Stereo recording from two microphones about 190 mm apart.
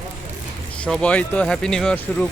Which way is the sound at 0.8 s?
5° left (ahead or behind).